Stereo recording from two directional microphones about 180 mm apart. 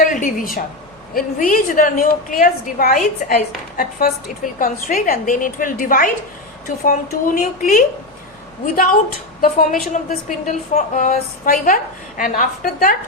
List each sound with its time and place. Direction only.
0.0 s a sound: 45° left (ahead or behind)
1.1 s a woman's voice: 50° left (ahead or behind)
4.6 s a woman's voice: 50° left (ahead or behind)